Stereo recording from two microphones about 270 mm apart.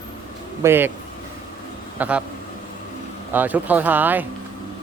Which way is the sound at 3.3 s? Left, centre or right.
Centre.